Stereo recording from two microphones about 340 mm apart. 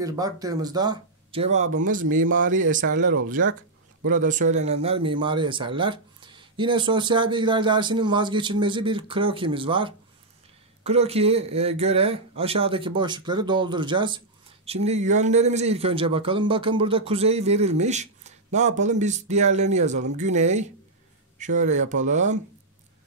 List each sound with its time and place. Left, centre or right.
0.0 s speech: centre